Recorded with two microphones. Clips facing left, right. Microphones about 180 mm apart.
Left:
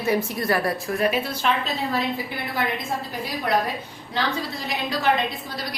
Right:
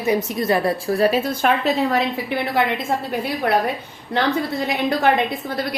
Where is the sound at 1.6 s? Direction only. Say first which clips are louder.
Right 7 dB; 75° right (ahead or behind).